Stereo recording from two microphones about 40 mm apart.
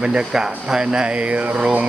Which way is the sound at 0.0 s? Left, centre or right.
Right.